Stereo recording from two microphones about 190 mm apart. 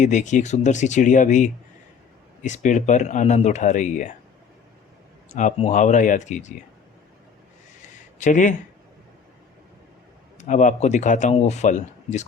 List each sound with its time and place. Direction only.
0.0 s a man's voice: 40° left (ahead or behind)
5.3 s a man's voice: 40° left (ahead or behind)
7.8 s a sound: 40° left (ahead or behind)
10.3 s a man's voice: 40° left (ahead or behind)